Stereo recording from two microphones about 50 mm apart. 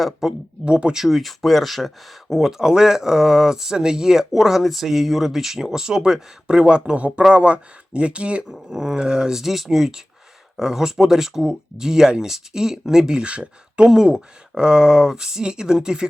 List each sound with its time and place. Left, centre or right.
0.0 s speech: centre
0.6 s speech: centre
1.0 s speech: centre
2.4 s speech: centre
8.4 s speech: centre
13.8 s speech: centre